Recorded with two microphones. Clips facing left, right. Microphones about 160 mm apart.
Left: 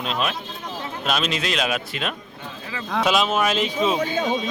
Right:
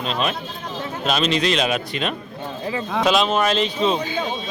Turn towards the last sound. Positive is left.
turn(degrees=5)  # may be behind; listen again after turning